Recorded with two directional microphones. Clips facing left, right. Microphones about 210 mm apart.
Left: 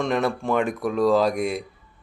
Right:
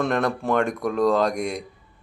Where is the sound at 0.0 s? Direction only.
5° left (ahead or behind).